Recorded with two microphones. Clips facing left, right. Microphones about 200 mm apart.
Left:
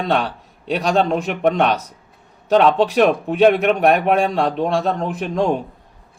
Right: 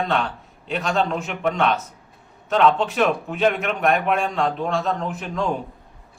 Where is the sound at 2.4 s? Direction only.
35° left (ahead or behind).